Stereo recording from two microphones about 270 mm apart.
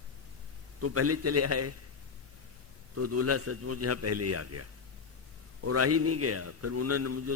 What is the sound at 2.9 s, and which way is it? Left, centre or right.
A man's voice, right.